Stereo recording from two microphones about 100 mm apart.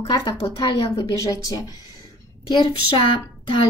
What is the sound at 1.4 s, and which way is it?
Speech, 35° left (ahead or behind).